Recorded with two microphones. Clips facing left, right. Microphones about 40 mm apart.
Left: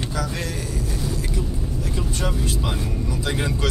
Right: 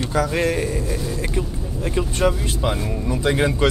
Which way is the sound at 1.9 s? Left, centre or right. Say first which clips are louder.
Right 9 dB; right.